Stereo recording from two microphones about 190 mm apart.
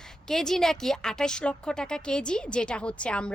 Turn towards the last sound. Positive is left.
turn(degrees=5)  # may be behind; listen again after turning